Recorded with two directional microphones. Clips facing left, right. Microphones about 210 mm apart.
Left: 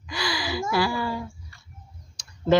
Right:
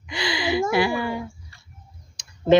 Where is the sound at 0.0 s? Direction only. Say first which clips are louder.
Right 3 dB; 25° right (ahead or behind).